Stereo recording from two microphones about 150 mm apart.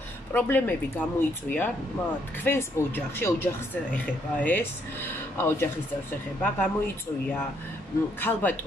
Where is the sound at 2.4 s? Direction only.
15° left (ahead or behind).